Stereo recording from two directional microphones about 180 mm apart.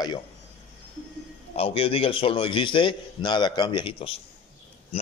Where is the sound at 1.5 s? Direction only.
30° left (ahead or behind).